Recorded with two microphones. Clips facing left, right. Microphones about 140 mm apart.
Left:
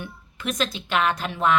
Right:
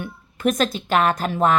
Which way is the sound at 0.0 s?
45° right (ahead or behind).